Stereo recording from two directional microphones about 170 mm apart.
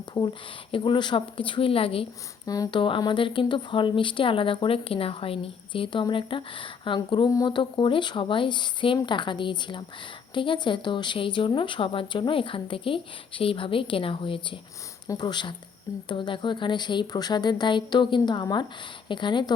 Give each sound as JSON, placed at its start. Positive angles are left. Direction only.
{"t": 0.7, "sound": "a woman's voice", "side_deg": 25}